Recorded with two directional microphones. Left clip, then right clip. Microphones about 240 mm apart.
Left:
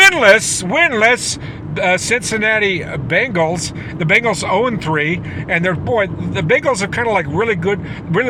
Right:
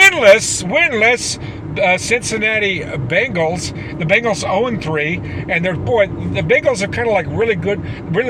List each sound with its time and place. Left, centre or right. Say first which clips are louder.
0.0 s speech: even; centre